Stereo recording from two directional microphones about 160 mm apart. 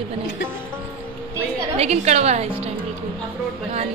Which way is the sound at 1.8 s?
40° right (ahead or behind).